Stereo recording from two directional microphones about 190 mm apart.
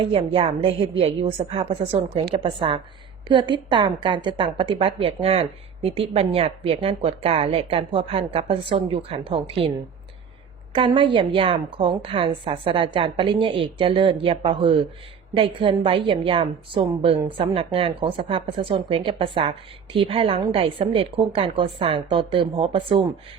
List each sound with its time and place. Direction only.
0.0 s a woman's voice: 30° right (ahead or behind)
10.7 s a woman's voice: 25° right (ahead or behind)